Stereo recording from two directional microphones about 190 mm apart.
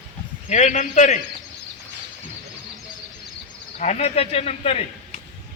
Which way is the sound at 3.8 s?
35° left (ahead or behind).